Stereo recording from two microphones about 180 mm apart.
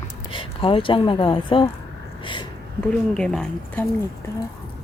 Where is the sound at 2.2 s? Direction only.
25° left (ahead or behind).